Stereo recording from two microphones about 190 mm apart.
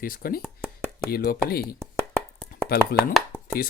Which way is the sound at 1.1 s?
50° left (ahead or behind).